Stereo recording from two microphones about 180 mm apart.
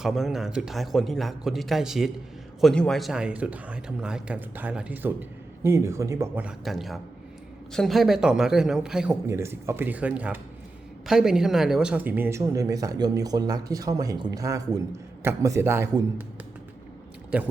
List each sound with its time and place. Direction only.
0.0 s a man's voice: centre (ahead or behind)
6.7 s a man's voice: centre (ahead or behind); by 16.0 s 15° right (ahead or behind)